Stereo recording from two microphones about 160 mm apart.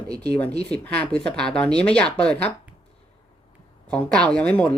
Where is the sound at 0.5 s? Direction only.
85° right.